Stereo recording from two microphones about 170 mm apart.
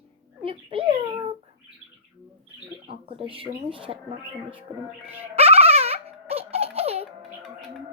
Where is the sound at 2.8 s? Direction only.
30° right (ahead or behind).